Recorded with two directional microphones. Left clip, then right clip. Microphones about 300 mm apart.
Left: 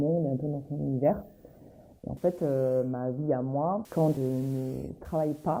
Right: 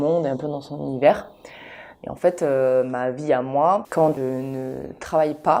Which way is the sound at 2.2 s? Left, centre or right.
Centre.